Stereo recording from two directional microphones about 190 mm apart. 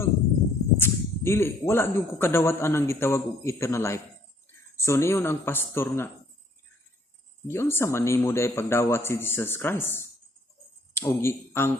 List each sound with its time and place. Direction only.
0.8 s speech: 15° left (ahead or behind)
7.4 s speech: 15° left (ahead or behind)